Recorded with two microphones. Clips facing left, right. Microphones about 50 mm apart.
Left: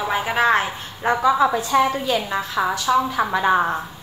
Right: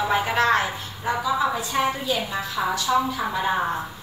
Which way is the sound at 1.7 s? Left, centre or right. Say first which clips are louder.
Left 5 dB; left.